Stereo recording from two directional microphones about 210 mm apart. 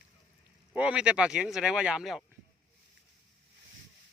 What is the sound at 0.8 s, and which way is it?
Speech, 5° right (ahead or behind).